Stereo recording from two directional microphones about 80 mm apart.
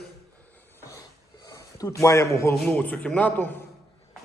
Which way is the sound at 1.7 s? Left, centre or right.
Left.